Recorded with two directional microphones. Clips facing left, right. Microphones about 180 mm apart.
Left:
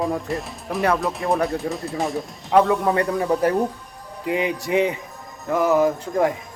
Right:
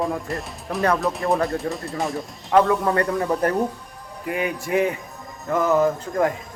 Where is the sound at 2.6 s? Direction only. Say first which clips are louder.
Left 1 dB; 15° left (ahead or behind).